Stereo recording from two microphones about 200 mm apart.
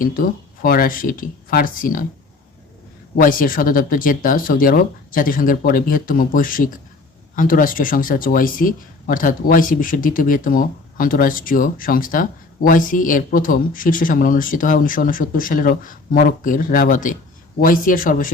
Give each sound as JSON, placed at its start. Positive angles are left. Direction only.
{"t": 0.0, "sound": "speech", "side_deg": 45}
{"t": 3.2, "sound": "speech", "side_deg": 45}